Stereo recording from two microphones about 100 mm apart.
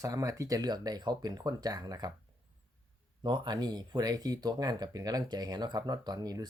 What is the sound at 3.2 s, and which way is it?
Speech, 45° right (ahead or behind).